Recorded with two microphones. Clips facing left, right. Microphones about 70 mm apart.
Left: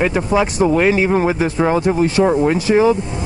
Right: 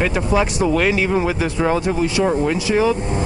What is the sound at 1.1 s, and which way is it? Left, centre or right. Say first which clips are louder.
Speech: left 3 dB; left.